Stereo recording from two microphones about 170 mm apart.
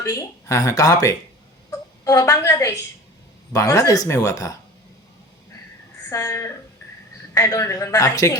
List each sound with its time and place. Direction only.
0.0 s a woman's voice: 20° left (ahead or behind)
6.1 s a woman's voice: 20° left (ahead or behind)